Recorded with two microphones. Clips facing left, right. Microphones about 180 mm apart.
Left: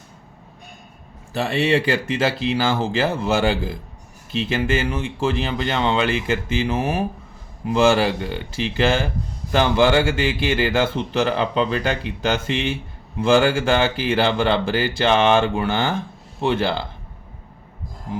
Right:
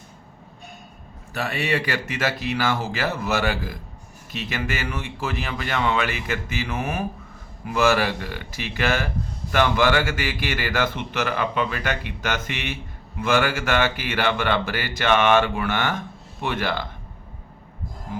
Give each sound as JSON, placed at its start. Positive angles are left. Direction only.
{"t": 1.3, "sound": "speech", "side_deg": 30}